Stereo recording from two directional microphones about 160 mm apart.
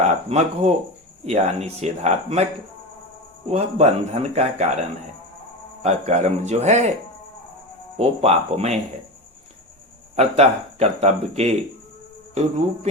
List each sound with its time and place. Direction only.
0.0 s speech: 40° right (ahead or behind)
3.5 s a man's voice: 40° right (ahead or behind)
7.9 s a man's voice: 40° right (ahead or behind)
10.2 s speech: 45° right (ahead or behind)